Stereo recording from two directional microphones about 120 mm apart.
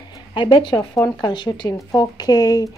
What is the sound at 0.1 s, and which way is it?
A woman's voice, 45° left (ahead or behind).